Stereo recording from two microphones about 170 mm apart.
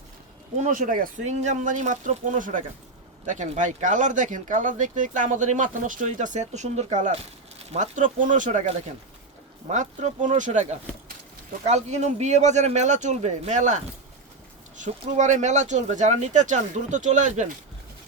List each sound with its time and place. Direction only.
0.6 s speech: 50° right (ahead or behind)